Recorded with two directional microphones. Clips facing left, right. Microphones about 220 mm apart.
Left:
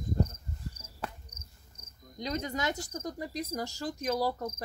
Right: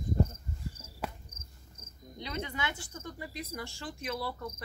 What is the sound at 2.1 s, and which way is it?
Cricket, 40° left (ahead or behind).